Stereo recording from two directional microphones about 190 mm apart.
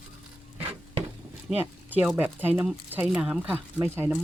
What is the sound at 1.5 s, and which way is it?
Speech, 10° right (ahead or behind).